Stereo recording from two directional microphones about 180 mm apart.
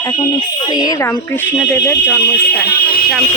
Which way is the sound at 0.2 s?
25° left (ahead or behind).